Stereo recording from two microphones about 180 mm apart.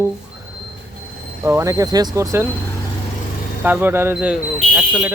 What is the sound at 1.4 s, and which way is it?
Speech, 15° right (ahead or behind).